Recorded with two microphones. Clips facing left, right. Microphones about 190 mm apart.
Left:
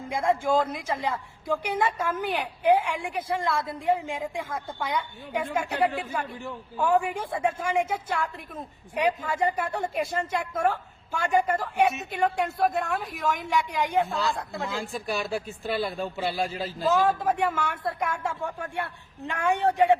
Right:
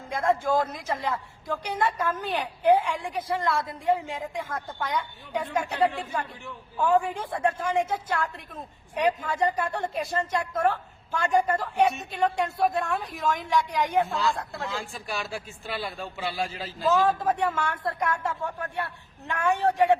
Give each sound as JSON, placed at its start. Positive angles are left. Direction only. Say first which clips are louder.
{"t": 0.1, "sound": "a woman's voice", "louder": "even", "side_deg": 10}
{"t": 14.8, "sound": "speech", "louder": "left 4 dB", "side_deg": 40}
{"t": 16.8, "sound": "a woman's voice", "louder": "even", "side_deg": 10}